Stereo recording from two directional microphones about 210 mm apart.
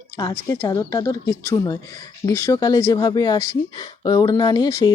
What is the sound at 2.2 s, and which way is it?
Speech, 15° left (ahead or behind).